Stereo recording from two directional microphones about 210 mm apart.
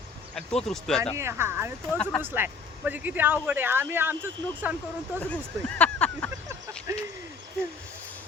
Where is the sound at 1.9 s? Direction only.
5° left (ahead or behind).